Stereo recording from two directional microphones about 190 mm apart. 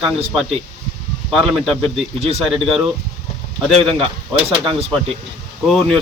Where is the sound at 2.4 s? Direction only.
Centre (ahead or behind).